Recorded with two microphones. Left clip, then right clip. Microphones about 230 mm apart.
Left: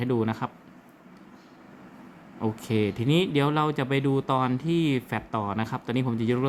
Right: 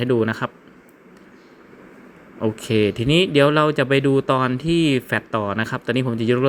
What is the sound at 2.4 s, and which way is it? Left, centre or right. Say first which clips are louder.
Speech: right 8 dB; centre.